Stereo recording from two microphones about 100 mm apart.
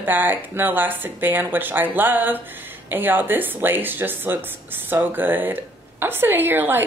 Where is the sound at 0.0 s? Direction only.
20° right (ahead or behind).